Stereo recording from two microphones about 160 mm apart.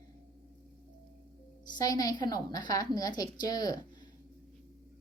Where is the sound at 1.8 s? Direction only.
25° left (ahead or behind).